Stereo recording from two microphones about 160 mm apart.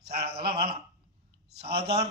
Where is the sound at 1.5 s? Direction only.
90° right.